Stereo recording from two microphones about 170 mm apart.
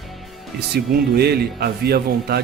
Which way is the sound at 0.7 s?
70° right (ahead or behind).